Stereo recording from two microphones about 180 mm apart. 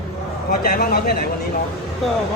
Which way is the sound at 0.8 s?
60° left (ahead or behind).